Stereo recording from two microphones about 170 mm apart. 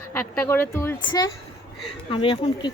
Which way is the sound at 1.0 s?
25° left (ahead or behind).